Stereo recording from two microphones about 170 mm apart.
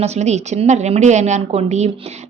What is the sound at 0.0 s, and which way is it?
A woman's voice, 40° right (ahead or behind).